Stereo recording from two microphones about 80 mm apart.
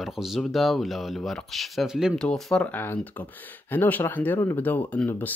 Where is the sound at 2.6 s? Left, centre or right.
Left.